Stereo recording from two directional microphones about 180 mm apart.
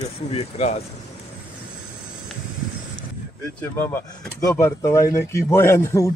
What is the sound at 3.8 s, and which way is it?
Speech, 15° left (ahead or behind).